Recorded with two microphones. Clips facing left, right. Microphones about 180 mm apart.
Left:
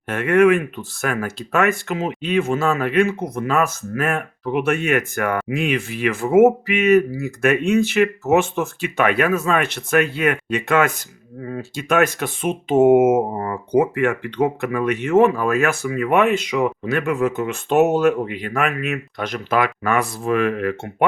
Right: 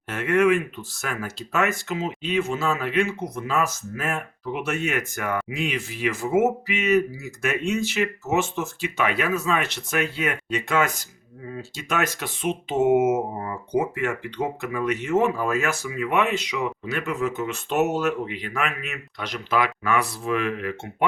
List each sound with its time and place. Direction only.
0.1 s speech: 55° left (ahead or behind)